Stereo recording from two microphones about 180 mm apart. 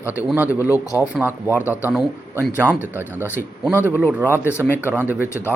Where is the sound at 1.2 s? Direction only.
10° right (ahead or behind).